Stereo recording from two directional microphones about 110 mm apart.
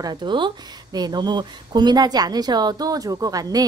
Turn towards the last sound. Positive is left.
turn(degrees=-35)  # may be behind; listen again after turning